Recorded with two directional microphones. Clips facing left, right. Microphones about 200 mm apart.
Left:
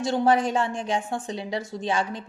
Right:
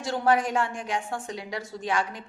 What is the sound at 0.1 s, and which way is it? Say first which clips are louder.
A woman's voice: left 2 dB; 25° left (ahead or behind).